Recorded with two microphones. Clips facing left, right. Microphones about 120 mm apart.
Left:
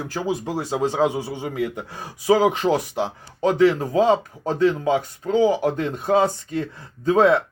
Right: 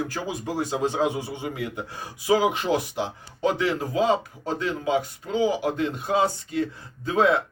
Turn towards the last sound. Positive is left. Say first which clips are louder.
# left 5 dB
turn(degrees=40)  # may be behind; listen again after turning